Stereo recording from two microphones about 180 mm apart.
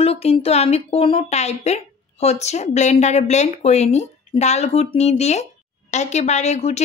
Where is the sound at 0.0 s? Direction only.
35° left (ahead or behind).